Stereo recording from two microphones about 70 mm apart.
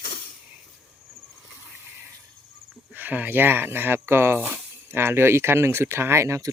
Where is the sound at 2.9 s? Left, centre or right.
Right.